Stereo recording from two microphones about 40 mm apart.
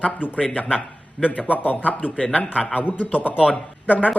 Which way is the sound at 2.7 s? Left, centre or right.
Left.